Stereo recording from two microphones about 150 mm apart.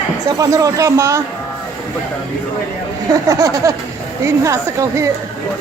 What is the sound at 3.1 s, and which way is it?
A man's voice, 25° right (ahead or behind).